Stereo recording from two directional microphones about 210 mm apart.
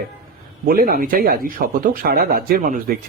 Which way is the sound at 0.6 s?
45° right (ahead or behind).